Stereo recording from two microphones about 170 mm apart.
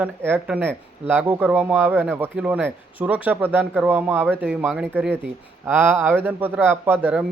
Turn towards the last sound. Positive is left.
turn(degrees=-10)  # may be behind; listen again after turning